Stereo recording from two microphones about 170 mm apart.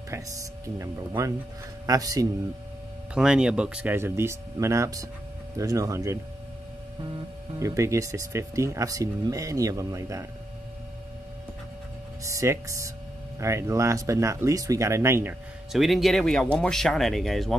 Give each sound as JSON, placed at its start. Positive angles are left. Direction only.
{"t": 0.7, "sound": "speech", "side_deg": -15}
{"t": 3.2, "sound": "speech", "side_deg": -5}
{"t": 7.5, "sound": "speech", "side_deg": -15}
{"t": 12.2, "sound": "speech", "side_deg": -20}
{"t": 15.7, "sound": "speech", "side_deg": 0}